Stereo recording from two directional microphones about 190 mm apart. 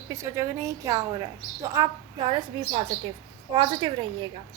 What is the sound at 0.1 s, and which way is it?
A woman's voice, 15° right (ahead or behind).